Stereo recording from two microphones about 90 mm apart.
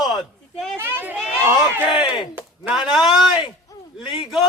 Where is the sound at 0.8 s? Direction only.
25° right (ahead or behind).